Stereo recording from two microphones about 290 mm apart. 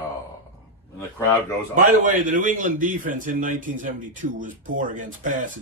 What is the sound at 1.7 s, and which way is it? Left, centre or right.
Speech, right.